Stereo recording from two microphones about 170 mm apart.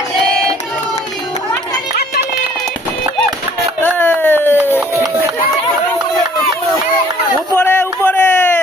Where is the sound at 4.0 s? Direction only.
10° left (ahead or behind).